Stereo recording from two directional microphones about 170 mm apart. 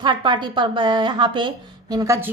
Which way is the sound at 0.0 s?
25° right (ahead or behind).